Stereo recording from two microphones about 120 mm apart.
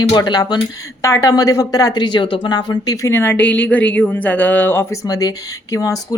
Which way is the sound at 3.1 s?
20° left (ahead or behind).